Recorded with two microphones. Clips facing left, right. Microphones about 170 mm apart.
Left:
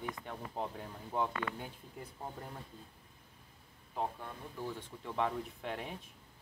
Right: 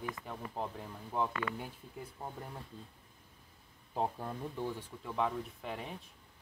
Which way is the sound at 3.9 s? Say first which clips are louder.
Right 3 dB; 35° right (ahead or behind).